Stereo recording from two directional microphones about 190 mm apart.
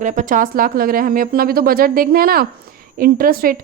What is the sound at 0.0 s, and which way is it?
A woman's voice, 40° right (ahead or behind).